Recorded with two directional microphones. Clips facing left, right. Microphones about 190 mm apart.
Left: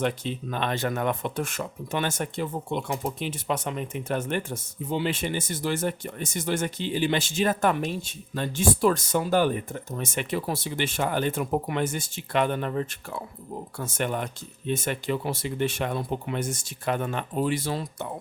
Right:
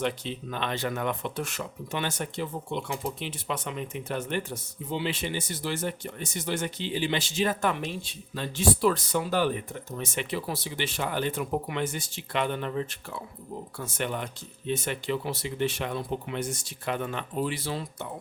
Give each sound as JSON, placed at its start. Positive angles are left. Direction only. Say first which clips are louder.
{"t": 0.0, "sound": "speech", "louder": "left 3 dB", "side_deg": 50}